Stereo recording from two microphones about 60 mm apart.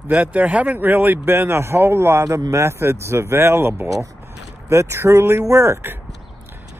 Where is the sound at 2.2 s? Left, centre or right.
Right.